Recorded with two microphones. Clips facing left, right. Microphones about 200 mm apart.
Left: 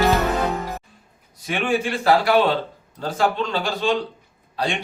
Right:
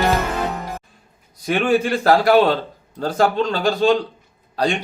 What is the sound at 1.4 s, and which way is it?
A man's voice, 40° right (ahead or behind).